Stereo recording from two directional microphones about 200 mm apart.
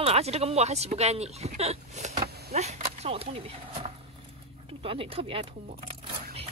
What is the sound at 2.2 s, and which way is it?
Vehicle, 50° right (ahead or behind).